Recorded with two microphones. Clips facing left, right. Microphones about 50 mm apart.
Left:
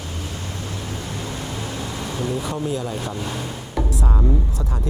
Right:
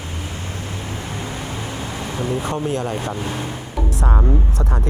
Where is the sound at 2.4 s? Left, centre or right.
Right.